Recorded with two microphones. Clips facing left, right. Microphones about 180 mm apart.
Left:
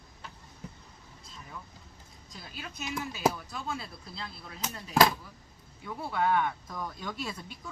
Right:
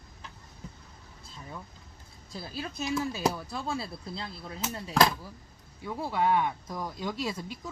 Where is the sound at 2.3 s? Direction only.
35° right (ahead or behind).